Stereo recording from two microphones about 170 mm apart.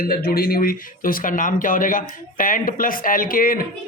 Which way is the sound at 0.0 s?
60° left (ahead or behind).